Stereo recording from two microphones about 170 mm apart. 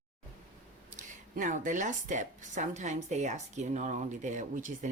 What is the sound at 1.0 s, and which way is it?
Speech, 50° right (ahead or behind).